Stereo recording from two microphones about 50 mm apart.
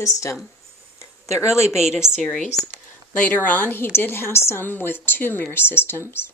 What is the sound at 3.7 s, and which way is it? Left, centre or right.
Speech, left.